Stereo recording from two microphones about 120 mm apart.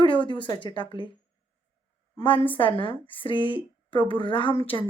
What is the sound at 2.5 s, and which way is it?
A woman's voice, 45° left (ahead or behind).